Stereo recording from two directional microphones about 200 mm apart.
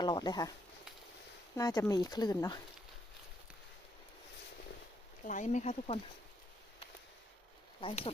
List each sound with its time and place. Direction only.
0.0 s speech: 20° left (ahead or behind)
1.5 s speech: 15° left (ahead or behind)
5.2 s speech: 40° left (ahead or behind)
7.8 s speech: 30° left (ahead or behind)